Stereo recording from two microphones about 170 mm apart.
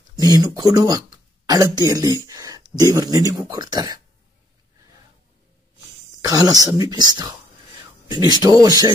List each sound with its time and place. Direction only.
0.3 s speech: 20° right (ahead or behind)
6.2 s speech: 20° right (ahead or behind)